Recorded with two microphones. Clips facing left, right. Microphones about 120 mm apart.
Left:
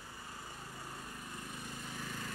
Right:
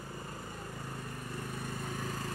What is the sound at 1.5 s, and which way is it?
Lawn mower, 50° right (ahead or behind).